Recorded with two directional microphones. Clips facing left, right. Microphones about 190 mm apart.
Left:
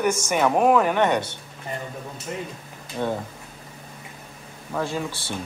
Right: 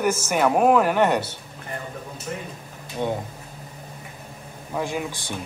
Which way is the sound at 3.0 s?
15° right (ahead or behind).